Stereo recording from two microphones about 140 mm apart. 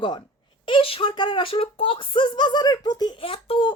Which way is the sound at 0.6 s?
40° left (ahead or behind).